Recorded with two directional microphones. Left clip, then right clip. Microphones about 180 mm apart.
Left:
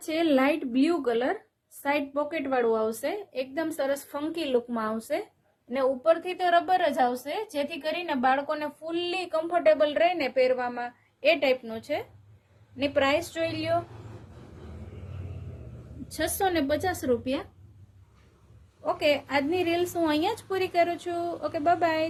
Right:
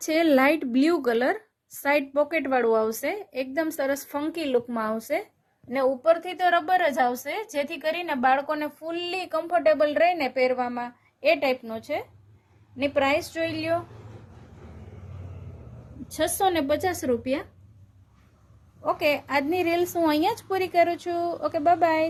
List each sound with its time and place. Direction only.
0.0 s a woman's voice: 55° right (ahead or behind); by 13.7 s 35° right (ahead or behind)
16.4 s a woman's voice: 35° right (ahead or behind)
18.8 s a woman's voice: 40° right (ahead or behind)